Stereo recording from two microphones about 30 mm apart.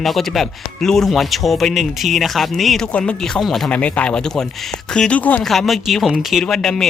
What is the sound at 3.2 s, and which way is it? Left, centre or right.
Speech, centre.